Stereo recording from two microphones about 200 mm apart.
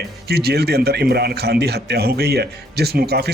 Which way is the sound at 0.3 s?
55° right (ahead or behind).